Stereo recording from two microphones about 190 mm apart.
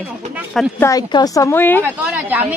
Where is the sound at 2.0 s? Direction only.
10° right (ahead or behind).